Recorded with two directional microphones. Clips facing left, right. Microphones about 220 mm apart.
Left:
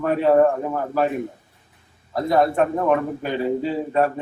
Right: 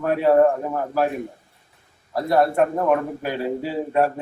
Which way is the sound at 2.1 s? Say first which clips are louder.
Even; 5° right (ahead or behind).